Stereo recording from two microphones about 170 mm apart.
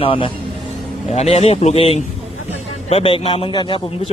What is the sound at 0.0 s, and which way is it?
Speech, 30° left (ahead or behind).